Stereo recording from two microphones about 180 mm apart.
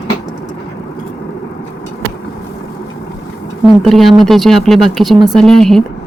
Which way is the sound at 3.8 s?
Centre (ahead or behind).